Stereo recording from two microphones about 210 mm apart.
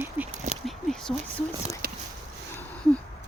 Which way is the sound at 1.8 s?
45° right (ahead or behind).